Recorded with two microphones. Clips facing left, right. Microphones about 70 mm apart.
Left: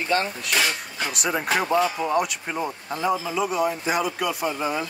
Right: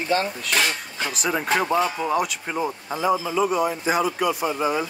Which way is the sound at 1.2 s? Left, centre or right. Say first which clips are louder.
Right 1 dB; centre.